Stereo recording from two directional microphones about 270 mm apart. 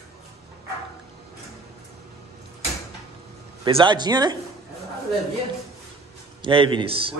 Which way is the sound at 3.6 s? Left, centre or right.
Centre.